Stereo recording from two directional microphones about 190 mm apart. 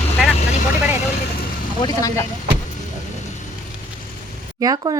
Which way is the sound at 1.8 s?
20° left (ahead or behind).